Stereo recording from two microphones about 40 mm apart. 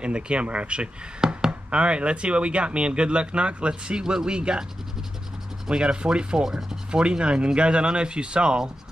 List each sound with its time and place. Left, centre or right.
0.0 s speech: right
5.7 s speech: right